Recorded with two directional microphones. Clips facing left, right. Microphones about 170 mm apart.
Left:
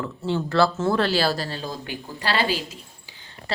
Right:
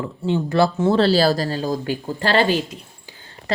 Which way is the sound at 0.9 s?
35° right (ahead or behind).